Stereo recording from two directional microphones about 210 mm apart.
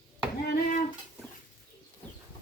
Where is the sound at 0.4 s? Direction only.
45° left (ahead or behind).